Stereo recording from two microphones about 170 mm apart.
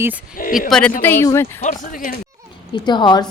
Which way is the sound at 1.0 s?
10° left (ahead or behind).